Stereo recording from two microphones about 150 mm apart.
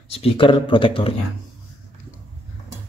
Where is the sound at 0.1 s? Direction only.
40° left (ahead or behind).